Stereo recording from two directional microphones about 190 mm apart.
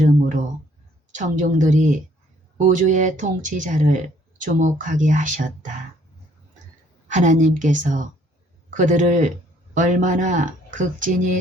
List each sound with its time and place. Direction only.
1.1 s speech: 40° right (ahead or behind)
7.1 s speech: 40° right (ahead or behind)